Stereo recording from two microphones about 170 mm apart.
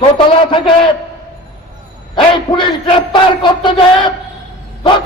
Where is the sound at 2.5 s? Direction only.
25° left (ahead or behind).